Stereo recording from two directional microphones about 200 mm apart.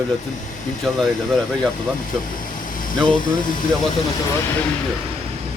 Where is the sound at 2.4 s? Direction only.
45° left (ahead or behind).